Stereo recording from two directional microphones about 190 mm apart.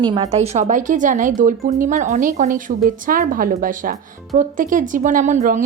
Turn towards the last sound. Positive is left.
turn(degrees=-40)  # may be behind; listen again after turning